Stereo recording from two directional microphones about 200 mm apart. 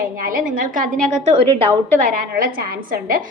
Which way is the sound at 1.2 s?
30° right (ahead or behind).